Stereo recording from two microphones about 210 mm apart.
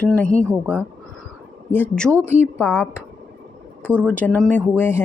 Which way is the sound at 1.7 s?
10° left (ahead or behind).